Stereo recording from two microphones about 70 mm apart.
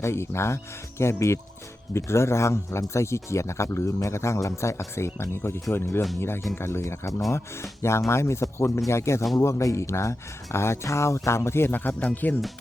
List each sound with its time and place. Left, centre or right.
0.0 s speech: left